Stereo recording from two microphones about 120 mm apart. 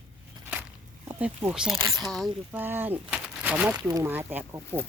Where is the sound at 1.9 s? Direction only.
30° right (ahead or behind).